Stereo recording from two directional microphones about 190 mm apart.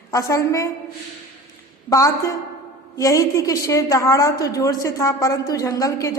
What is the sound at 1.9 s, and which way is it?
A woman's voice, 15° left (ahead or behind).